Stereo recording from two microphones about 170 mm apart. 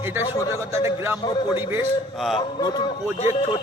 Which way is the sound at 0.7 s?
15° right (ahead or behind).